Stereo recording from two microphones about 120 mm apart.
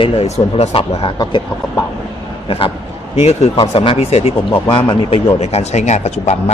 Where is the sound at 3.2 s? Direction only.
60° left (ahead or behind).